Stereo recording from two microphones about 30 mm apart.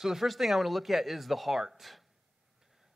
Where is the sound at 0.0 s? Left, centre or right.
Centre.